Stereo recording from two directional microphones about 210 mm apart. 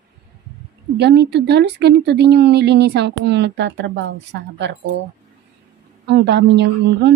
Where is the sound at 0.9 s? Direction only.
55° right (ahead or behind).